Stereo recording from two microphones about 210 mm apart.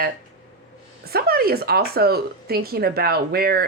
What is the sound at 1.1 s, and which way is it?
A woman's voice, 45° right (ahead or behind).